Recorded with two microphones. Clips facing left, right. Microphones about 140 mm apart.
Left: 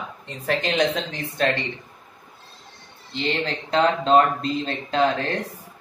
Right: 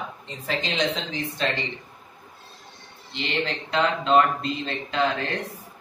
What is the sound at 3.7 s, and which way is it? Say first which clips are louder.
Speech: left 3 dB; 35° left (ahead or behind).